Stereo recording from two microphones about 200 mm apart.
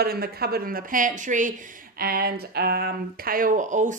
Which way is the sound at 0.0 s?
50° right (ahead or behind).